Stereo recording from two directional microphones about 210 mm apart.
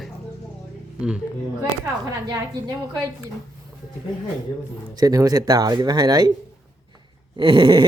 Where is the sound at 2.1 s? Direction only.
20° right (ahead or behind).